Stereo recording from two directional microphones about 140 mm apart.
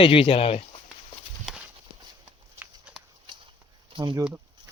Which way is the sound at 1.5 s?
5° right (ahead or behind).